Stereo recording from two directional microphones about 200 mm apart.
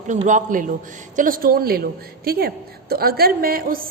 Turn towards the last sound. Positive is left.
turn(degrees=-45)  # may be behind; listen again after turning